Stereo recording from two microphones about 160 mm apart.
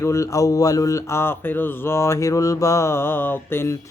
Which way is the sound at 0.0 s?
20° left (ahead or behind).